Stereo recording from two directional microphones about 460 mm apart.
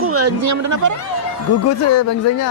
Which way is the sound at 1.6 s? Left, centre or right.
Left.